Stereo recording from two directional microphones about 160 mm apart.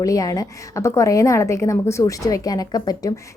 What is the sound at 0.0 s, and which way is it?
A woman's voice, 20° left (ahead or behind).